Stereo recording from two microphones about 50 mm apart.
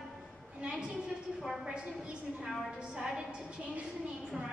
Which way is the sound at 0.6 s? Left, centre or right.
Centre.